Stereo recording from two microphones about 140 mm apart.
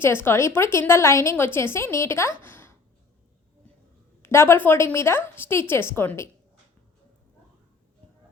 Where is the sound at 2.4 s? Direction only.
15° left (ahead or behind).